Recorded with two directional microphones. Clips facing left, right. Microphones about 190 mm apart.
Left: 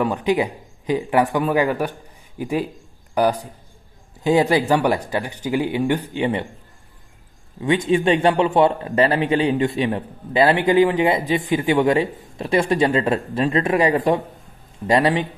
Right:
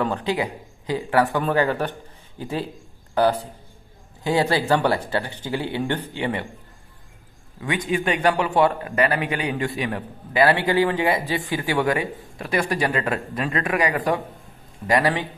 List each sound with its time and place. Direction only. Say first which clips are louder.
0.0 s a man's voice: left 4 dB; 15° left (ahead or behind)
7.6 s a man's voice: left 6 dB; 25° left (ahead or behind)